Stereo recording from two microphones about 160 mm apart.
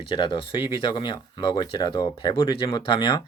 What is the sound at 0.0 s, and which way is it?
Speech, 30° left (ahead or behind).